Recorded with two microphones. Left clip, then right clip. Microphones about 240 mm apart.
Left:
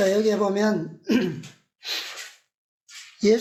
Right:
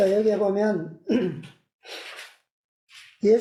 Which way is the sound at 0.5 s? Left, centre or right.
Left.